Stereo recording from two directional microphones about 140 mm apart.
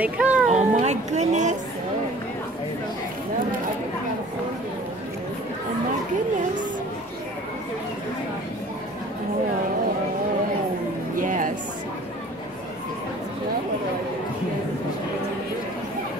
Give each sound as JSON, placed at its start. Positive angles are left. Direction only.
{"t": 0.0, "sound": "speech", "side_deg": -10}
{"t": 0.5, "sound": "speech", "side_deg": -55}
{"t": 11.1, "sound": "a sound", "side_deg": -75}